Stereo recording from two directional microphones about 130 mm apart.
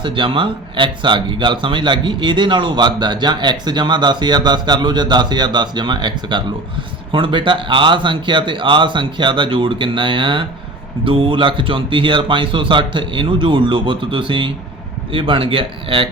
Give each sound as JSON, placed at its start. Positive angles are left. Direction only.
{"t": 0.0, "sound": "speech", "side_deg": -40}